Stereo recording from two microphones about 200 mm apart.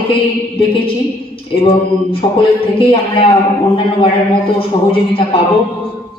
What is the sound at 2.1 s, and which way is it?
A man's voice, 25° left (ahead or behind).